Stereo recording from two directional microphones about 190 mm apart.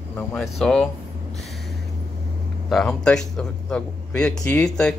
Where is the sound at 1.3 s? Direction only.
Centre (ahead or behind).